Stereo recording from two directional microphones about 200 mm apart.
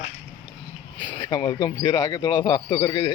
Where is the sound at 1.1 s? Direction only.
20° left (ahead or behind).